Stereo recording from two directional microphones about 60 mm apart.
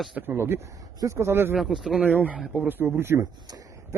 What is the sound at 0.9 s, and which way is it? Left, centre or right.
Speech, right.